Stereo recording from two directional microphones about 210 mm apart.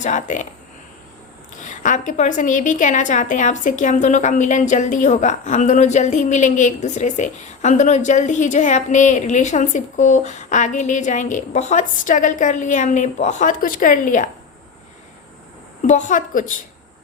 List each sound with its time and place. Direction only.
0.0 s a woman's voice: 35° left (ahead or behind)
1.6 s a woman's voice: 35° left (ahead or behind)
15.9 s a woman's voice: 35° left (ahead or behind)